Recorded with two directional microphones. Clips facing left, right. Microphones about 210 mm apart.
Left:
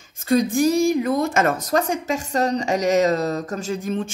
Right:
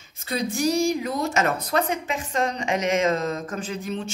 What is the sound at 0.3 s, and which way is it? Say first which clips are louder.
A woman's voice: left 6 dB; 50° left (ahead or behind).